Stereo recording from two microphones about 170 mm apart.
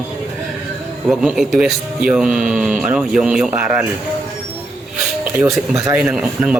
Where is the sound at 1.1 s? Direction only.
Centre (ahead or behind).